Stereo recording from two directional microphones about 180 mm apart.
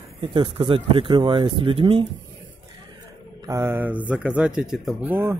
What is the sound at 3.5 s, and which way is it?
Speech, 15° right (ahead or behind).